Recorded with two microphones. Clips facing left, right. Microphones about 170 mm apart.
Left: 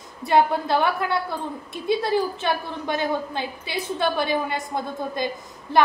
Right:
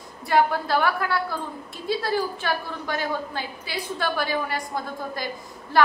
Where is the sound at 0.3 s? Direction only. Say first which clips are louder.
Left 2 dB; 20° left (ahead or behind).